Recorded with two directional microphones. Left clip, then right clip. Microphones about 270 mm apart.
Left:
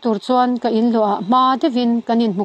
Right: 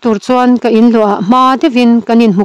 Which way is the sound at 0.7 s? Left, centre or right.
Right.